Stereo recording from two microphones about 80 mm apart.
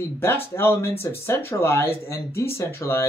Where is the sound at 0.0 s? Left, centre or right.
Left.